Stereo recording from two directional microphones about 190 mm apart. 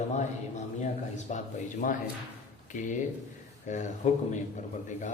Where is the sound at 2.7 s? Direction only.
40° left (ahead or behind).